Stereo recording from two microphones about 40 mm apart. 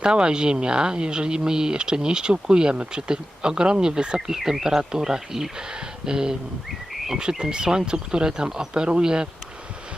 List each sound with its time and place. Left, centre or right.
0.0 s speech: right
4.4 s speech: centre
4.8 s speech: centre
6.7 s a sound: centre
7.2 s speech: centre